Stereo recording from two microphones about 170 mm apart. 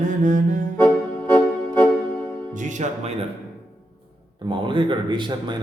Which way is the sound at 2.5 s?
45° right (ahead or behind).